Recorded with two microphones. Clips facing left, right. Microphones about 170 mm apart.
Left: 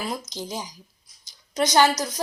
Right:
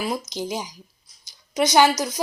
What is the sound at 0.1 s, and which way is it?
A woman's voice, 10° right (ahead or behind).